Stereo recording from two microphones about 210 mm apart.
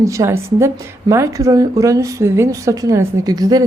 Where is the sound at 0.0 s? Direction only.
15° right (ahead or behind).